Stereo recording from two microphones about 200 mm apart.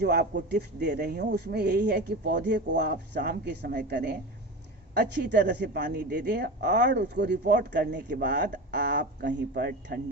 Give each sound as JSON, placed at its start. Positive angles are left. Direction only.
{"t": 0.0, "sound": "speech", "side_deg": -55}